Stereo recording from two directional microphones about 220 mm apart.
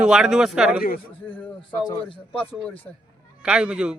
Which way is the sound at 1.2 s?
5° left (ahead or behind).